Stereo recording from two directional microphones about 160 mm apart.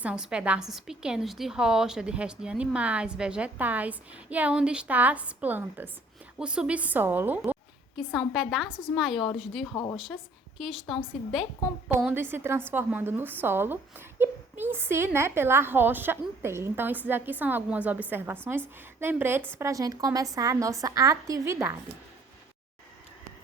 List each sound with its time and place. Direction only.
0.0 s a woman's voice: 5° right (ahead or behind)
8.3 s speech: centre (ahead or behind)
12.0 s a woman's voice: 15° right (ahead or behind)